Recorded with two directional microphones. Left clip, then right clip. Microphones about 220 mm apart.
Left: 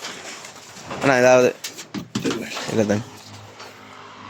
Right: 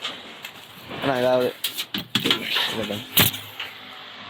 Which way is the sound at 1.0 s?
35° left (ahead or behind).